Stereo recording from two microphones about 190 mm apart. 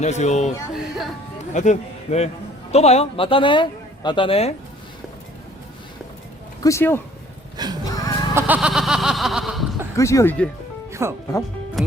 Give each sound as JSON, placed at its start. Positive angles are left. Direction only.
{"t": 0.0, "sound": "a man's voice", "side_deg": 35}
{"t": 0.7, "sound": "speech", "side_deg": 0}
{"t": 1.5, "sound": "a man's voice", "side_deg": 40}
{"t": 6.6, "sound": "speech", "side_deg": 15}
{"t": 7.5, "sound": "a sound", "side_deg": -20}
{"t": 7.9, "sound": "music", "side_deg": 20}
{"t": 8.4, "sound": "a sound", "side_deg": -10}
{"t": 10.0, "sound": "speech", "side_deg": 15}
{"t": 11.0, "sound": "speech", "side_deg": -15}